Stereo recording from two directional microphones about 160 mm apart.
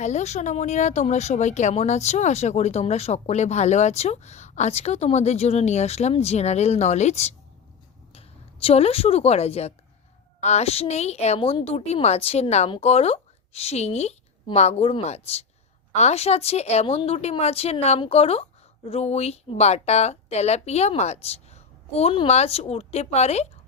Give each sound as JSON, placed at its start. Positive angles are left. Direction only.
{"t": 0.0, "sound": "speech", "side_deg": 45}
{"t": 8.6, "sound": "a woman's voice", "side_deg": 40}